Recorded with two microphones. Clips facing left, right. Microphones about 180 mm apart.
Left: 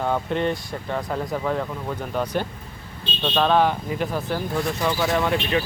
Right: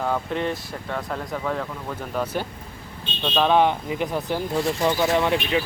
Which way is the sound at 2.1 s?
5° right (ahead or behind).